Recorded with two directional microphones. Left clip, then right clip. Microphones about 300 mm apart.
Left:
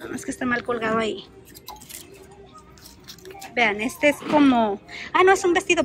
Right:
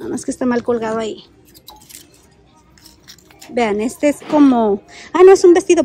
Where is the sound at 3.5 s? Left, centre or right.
Centre.